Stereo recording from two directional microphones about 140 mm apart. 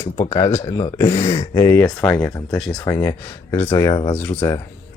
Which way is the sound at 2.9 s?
15° left (ahead or behind).